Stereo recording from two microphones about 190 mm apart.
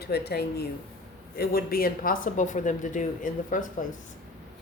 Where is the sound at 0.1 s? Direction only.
55° left (ahead or behind).